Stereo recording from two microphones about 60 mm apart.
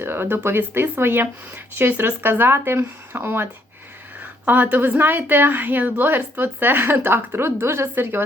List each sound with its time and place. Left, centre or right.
0.0 s a woman's voice: right
4.2 s a woman's voice: right